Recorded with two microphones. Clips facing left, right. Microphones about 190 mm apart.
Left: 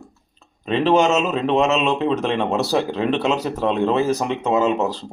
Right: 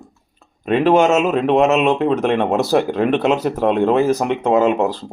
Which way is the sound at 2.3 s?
55° right (ahead or behind).